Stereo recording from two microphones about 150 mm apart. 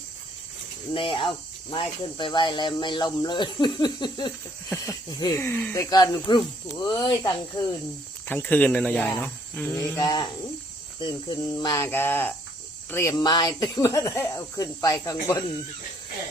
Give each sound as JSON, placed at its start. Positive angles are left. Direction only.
{"t": 0.9, "sound": "speech", "side_deg": 35}
{"t": 5.7, "sound": "speech", "side_deg": 25}
{"t": 8.3, "sound": "speech", "side_deg": 10}
{"t": 11.9, "sound": "speech", "side_deg": 15}